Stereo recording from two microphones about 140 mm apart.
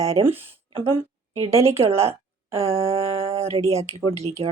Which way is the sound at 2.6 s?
45° right (ahead or behind).